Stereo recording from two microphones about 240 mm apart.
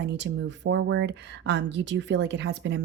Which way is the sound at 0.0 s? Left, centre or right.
Right.